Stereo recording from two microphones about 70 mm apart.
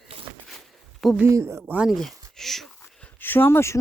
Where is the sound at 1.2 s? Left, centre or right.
Right.